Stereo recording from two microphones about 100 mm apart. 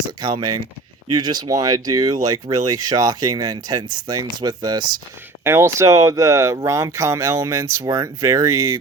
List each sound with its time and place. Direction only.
0.2 s speech: 50° right (ahead or behind)
5.4 s speech: 25° right (ahead or behind)